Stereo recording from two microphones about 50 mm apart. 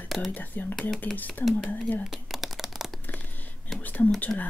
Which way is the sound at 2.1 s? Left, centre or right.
Centre.